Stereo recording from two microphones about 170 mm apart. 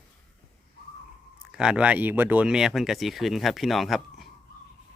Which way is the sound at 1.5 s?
5° right (ahead or behind).